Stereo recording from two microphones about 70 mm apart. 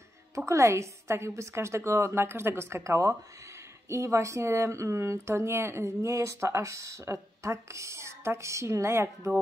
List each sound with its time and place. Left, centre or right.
0.5 s a woman's voice: right